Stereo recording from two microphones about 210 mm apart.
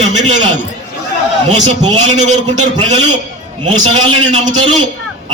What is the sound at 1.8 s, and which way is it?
A man's voice, 30° right (ahead or behind).